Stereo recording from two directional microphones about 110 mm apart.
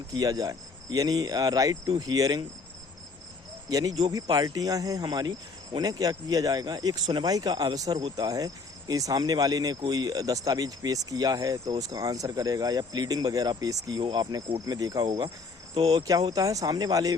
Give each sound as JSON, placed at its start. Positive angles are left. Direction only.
{"t": 0.1, "sound": "speech", "side_deg": -35}
{"t": 3.7, "sound": "speech", "side_deg": -35}
{"t": 8.3, "sound": "speech", "side_deg": -35}